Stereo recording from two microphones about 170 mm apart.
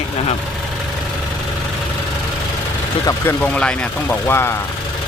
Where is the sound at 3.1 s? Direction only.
10° left (ahead or behind).